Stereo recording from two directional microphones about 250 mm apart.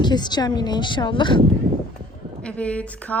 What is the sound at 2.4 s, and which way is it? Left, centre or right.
Speech, centre.